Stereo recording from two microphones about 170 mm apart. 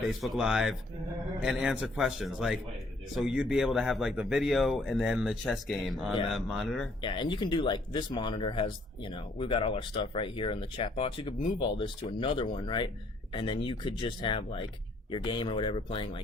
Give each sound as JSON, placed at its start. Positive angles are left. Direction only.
{"t": 0.2, "sound": "speech", "side_deg": 0}
{"t": 7.0, "sound": "speech", "side_deg": 30}